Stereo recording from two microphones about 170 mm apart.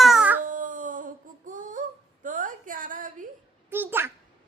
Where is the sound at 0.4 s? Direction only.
50° right (ahead or behind).